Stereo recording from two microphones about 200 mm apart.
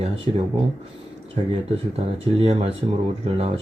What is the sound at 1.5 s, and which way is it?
Speech, 30° right (ahead or behind).